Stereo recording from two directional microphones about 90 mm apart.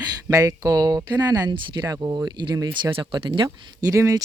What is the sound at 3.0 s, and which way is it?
Speech, 70° right (ahead or behind).